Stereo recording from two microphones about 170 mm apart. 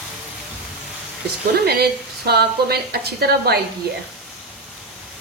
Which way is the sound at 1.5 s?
70° right (ahead or behind).